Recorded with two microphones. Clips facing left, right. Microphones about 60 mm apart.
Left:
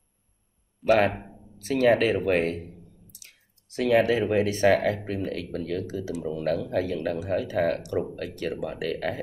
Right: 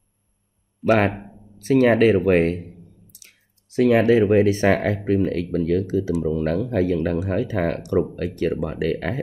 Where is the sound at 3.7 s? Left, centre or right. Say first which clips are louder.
Right 5 dB; right.